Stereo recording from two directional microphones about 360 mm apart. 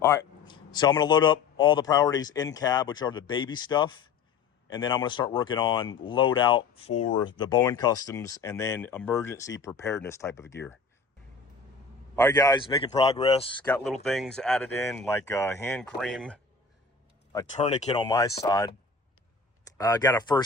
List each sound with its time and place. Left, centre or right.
0.0 s speech: centre
12.1 s speech: centre
13.7 s speech: centre
17.3 s speech: centre
19.8 s speech: centre